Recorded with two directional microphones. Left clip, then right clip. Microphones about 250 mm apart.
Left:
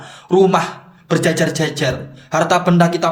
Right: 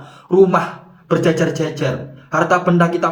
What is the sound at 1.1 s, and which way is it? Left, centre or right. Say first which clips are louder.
Speech: even; left.